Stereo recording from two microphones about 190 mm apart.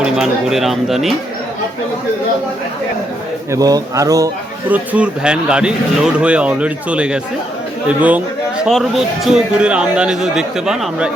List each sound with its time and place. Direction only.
0.0 s a man's voice: centre (ahead or behind)
3.5 s a man's voice: 20° right (ahead or behind); by 11.1 s 5° right (ahead or behind)